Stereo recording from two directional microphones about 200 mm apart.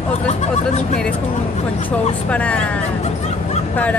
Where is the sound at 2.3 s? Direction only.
5° left (ahead or behind).